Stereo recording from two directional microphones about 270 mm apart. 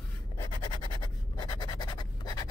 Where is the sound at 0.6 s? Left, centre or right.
Centre.